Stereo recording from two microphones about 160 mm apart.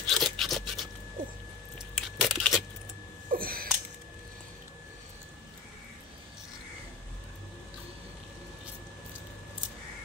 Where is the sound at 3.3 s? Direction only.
65° right (ahead or behind).